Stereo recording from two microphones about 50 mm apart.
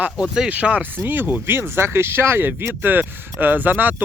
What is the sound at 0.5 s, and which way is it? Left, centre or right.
Speech, right.